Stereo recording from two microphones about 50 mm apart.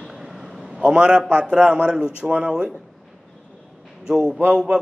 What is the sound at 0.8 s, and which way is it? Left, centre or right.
A man's voice, right.